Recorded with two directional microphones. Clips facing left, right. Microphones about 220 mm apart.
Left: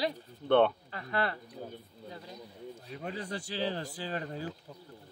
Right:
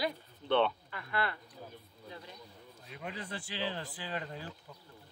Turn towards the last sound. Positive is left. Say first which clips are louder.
# left 4 dB
turn(degrees=40)  # may be behind; listen again after turning